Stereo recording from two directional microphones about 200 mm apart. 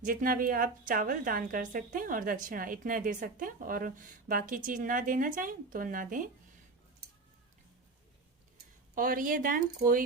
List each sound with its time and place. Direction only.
0.0 s a woman's voice: 45° right (ahead or behind)
9.0 s a woman's voice: 45° right (ahead or behind)